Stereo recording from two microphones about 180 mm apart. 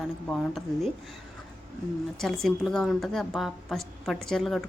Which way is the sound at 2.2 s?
Centre (ahead or behind).